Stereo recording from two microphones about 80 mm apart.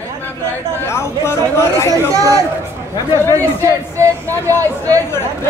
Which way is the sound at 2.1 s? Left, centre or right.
Right.